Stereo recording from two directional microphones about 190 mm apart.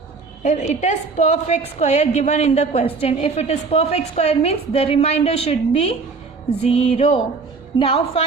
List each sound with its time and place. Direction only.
0.4 s a woman's voice: 40° left (ahead or behind)